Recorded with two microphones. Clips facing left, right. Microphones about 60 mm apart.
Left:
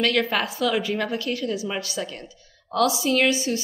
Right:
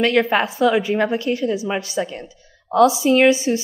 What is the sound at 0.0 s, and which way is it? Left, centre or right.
A woman's voice, right.